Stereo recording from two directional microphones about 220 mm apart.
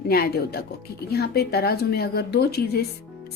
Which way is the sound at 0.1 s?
45° left (ahead or behind).